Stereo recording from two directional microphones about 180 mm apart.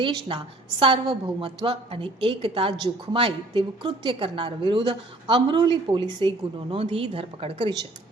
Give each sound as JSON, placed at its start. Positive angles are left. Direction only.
{"t": 0.0, "sound": "a woman's voice", "side_deg": -30}